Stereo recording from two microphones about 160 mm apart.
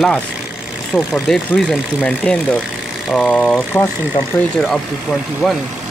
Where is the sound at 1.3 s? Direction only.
5° left (ahead or behind).